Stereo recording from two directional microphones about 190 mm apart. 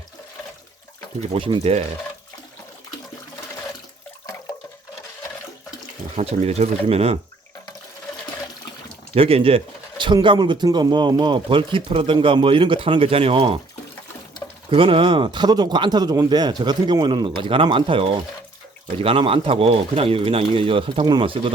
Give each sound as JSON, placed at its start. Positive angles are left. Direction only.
{"t": 1.3, "sound": "speech", "side_deg": -25}
{"t": 6.1, "sound": "speech", "side_deg": -35}
{"t": 9.1, "sound": "speech", "side_deg": -30}
{"t": 14.7, "sound": "speech", "side_deg": -30}